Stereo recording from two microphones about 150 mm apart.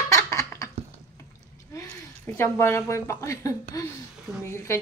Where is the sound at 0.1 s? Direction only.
20° left (ahead or behind).